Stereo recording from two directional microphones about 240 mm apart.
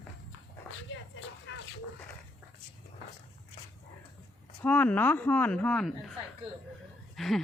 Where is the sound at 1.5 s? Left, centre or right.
Left.